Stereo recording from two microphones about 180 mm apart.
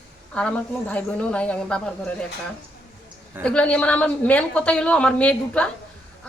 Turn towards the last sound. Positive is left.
turn(degrees=5)  # may be behind; listen again after turning